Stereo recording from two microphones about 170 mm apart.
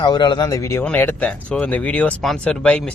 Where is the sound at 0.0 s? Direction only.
25° left (ahead or behind).